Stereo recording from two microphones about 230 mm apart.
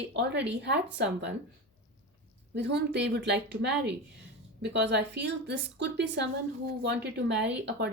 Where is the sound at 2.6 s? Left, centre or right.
Right.